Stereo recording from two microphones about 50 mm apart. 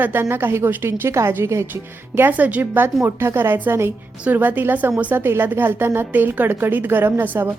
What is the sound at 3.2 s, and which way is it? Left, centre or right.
A woman's voice, right.